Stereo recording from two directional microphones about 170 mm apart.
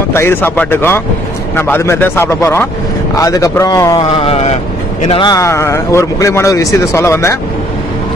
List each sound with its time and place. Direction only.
0.1 s speech: 15° left (ahead or behind); by 5.3 s 35° left (ahead or behind)
5.3 s speech: 15° left (ahead or behind)